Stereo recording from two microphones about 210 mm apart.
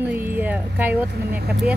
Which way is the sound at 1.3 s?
50° right (ahead or behind).